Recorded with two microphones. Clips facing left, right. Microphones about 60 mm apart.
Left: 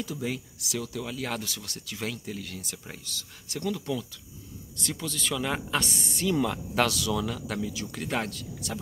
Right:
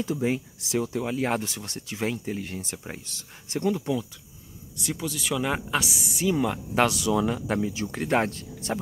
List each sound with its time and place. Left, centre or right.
0.0 s speech: right
4.7 s speech: centre; by 8.7 s right